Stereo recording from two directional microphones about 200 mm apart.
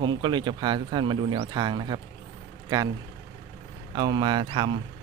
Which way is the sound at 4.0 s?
20° right (ahead or behind).